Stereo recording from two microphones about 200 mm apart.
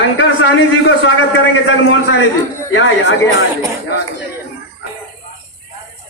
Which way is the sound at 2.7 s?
80° left.